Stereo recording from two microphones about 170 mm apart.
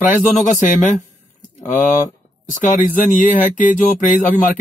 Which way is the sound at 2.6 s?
50° left (ahead or behind).